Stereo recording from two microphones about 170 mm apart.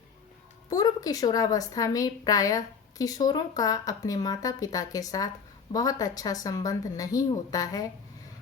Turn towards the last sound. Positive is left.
turn(degrees=20)  # may be behind; listen again after turning